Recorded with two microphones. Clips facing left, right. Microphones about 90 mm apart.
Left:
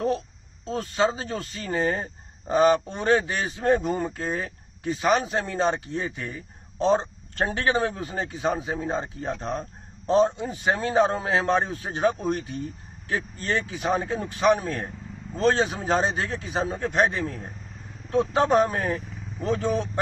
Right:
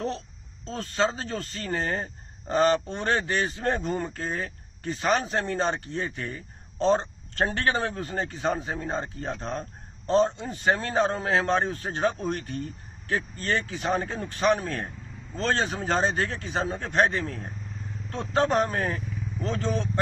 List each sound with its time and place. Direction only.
0.7 s speech: 15° left (ahead or behind)
19.4 s speech: 15° left (ahead or behind)